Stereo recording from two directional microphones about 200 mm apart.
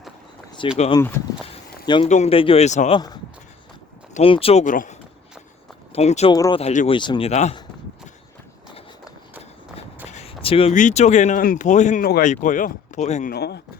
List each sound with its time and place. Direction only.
0.6 s speech: 25° left (ahead or behind)
0.9 s speech: 10° left (ahead or behind)
1.9 s speech: 30° left (ahead or behind)
4.1 s speech: 30° left (ahead or behind)
6.3 s speech: 20° left (ahead or behind)
6.6 s speech: 30° left (ahead or behind)
10.1 s speech: 30° left (ahead or behind)
13.3 s speech: 55° left (ahead or behind)